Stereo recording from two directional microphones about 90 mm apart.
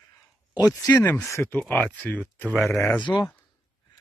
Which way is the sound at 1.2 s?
30° left (ahead or behind).